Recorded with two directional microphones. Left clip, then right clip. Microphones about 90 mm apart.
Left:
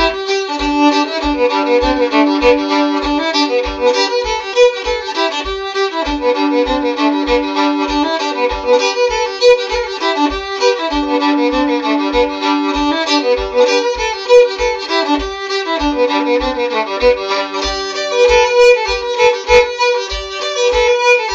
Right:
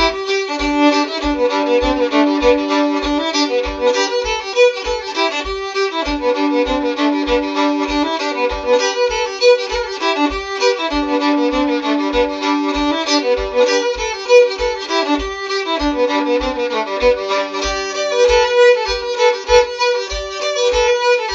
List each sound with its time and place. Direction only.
0.0 s music: 15° right (ahead or behind)
5.8 s music: 15° right (ahead or behind)
14.3 s violin: 15° right (ahead or behind)